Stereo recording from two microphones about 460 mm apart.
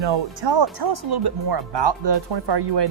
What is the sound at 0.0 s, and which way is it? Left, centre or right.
Speech, right.